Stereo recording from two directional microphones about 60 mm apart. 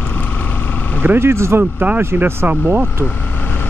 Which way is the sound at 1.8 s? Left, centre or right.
Right.